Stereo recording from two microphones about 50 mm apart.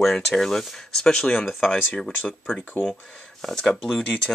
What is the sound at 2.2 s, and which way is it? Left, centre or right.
Speech, left.